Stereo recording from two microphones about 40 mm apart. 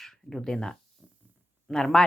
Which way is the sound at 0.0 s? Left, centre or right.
Centre.